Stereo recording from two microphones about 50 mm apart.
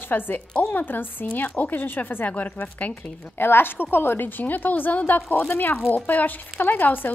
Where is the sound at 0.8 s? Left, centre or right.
Left.